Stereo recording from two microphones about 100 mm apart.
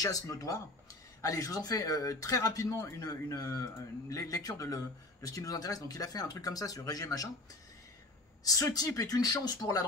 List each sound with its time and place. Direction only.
0.0 s speech: 35° left (ahead or behind)
8.5 s speech: 35° left (ahead or behind)